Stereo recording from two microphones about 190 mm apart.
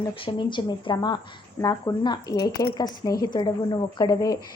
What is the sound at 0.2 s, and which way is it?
A woman's voice, 25° left (ahead or behind).